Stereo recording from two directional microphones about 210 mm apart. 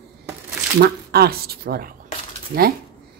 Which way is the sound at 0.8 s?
45° right (ahead or behind).